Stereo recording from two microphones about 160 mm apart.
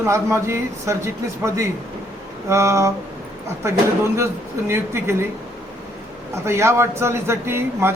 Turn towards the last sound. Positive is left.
turn(degrees=-15)  # may be behind; listen again after turning